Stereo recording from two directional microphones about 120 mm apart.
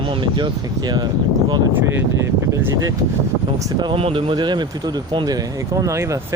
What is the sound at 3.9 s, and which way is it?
Speech, 50° right (ahead or behind).